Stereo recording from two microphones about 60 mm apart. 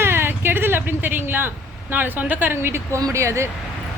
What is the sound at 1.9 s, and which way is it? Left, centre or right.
Speech, right.